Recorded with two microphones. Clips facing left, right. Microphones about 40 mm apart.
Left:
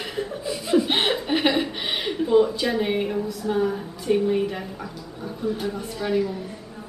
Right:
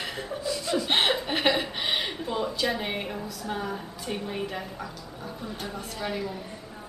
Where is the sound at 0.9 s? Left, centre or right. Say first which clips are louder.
Left 2 dB; centre.